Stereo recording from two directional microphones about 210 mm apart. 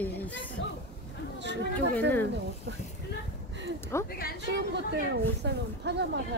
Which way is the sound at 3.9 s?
15° left (ahead or behind).